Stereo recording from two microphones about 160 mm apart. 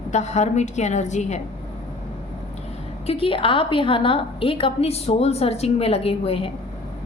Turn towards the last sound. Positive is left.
turn(degrees=35)  # may be behind; listen again after turning